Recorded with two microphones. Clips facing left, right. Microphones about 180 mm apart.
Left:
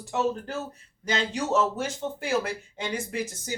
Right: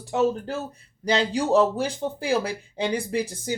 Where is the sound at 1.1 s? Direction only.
35° right (ahead or behind).